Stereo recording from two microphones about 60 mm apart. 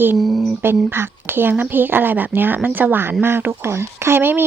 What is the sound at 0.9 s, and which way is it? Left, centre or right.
Speech, right.